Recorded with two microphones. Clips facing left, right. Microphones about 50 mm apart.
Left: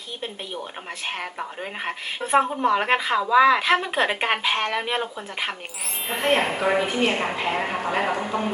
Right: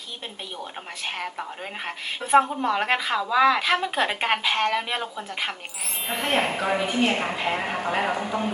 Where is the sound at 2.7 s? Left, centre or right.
Centre.